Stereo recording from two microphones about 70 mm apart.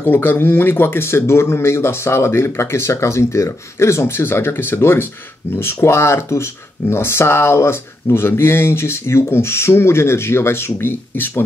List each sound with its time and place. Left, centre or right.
0.0 s speech: left